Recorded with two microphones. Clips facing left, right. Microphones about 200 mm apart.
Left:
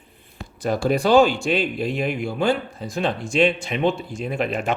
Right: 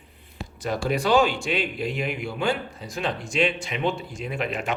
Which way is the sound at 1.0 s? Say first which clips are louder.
Left 5 dB; 30° left (ahead or behind).